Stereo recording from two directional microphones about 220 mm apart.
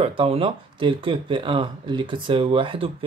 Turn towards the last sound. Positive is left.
turn(degrees=-25)  # may be behind; listen again after turning